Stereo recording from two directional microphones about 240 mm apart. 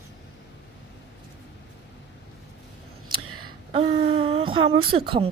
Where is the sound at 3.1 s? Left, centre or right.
Right.